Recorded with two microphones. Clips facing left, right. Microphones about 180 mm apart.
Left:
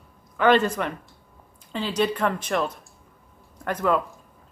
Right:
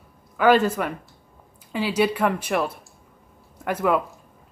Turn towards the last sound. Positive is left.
turn(degrees=-10)  # may be behind; listen again after turning